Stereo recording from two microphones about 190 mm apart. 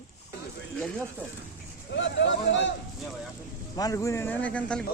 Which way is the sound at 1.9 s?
70° left (ahead or behind).